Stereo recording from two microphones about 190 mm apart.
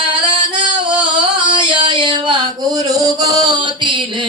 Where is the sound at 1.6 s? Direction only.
25° right (ahead or behind).